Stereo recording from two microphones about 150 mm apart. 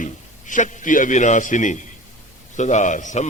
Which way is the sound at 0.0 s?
55° left (ahead or behind).